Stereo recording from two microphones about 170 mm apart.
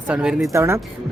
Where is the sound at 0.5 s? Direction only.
15° right (ahead or behind).